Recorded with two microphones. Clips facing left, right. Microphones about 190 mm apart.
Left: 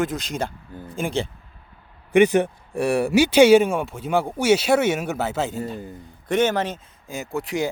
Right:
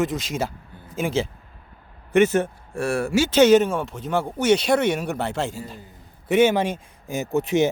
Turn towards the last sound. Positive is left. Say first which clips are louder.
# right 5 dB
turn(degrees=-20)  # may be behind; listen again after turning